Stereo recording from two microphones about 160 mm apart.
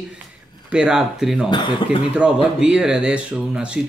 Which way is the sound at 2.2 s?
5° right (ahead or behind).